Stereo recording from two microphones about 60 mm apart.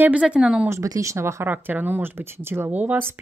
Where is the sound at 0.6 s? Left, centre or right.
Right.